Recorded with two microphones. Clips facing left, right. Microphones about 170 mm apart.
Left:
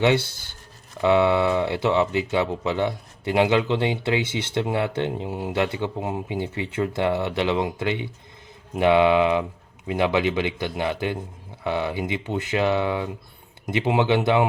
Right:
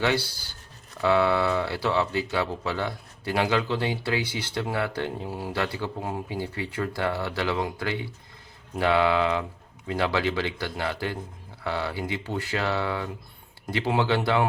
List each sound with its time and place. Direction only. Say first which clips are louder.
0.0 s speech: left 5 dB; 20° left (ahead or behind)